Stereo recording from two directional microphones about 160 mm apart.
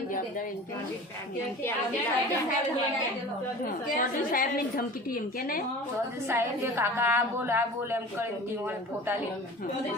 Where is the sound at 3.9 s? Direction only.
60° left (ahead or behind).